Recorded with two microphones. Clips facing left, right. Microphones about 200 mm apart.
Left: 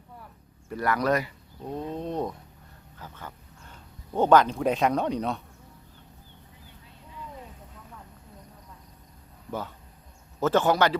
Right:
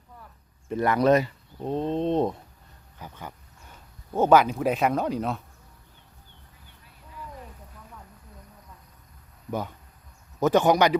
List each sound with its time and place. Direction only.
0.7 s mechanisms: 20° right (ahead or behind)
3.0 s speech: 15° right (ahead or behind)
10.4 s speech: 15° right (ahead or behind)